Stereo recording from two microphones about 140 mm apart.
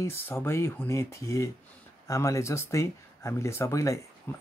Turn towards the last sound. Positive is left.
turn(degrees=15)  # may be behind; listen again after turning